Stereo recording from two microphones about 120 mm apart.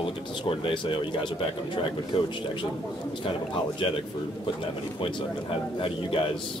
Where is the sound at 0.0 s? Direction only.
45° left (ahead or behind).